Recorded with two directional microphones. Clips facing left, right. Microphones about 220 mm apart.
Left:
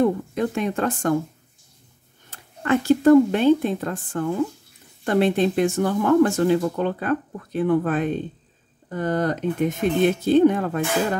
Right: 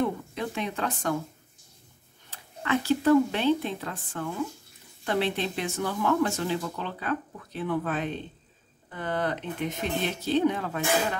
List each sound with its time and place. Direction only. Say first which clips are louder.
0.0 s speech: left 8 dB; 50° left (ahead or behind)
2.3 s speech: left 6 dB; 50° left (ahead or behind)